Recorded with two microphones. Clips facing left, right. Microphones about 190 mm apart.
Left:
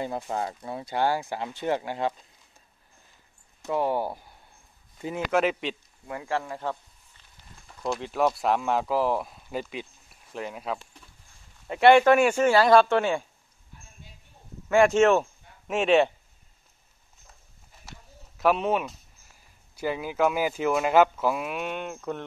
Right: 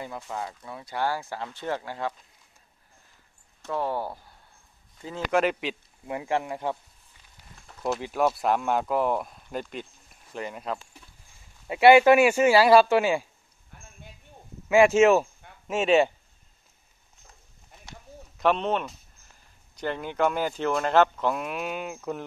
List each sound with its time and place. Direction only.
0.0 s speech: 35° left (ahead or behind)
3.6 s speech: 15° left (ahead or behind)
5.3 s speech: centre (ahead or behind)
6.0 s speech: 20° right (ahead or behind)
7.8 s speech: 5° right (ahead or behind)
13.7 s a sound: 60° right (ahead or behind)
14.7 s speech: 5° right (ahead or behind)
18.4 s speech: 5° left (ahead or behind)